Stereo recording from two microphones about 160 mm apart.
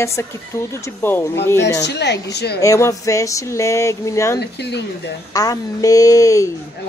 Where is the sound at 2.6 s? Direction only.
20° left (ahead or behind).